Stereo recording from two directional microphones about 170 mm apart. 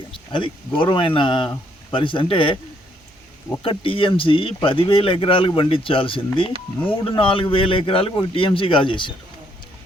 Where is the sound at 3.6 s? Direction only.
30° left (ahead or behind).